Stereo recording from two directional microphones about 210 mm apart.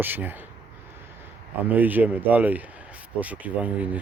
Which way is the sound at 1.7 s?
10° right (ahead or behind).